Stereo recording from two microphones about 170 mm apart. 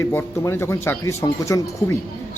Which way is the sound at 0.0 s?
15° left (ahead or behind).